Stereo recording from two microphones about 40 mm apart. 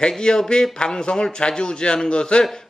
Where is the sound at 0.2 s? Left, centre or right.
Centre.